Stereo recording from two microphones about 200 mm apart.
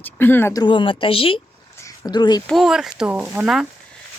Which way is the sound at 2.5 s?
Centre (ahead or behind).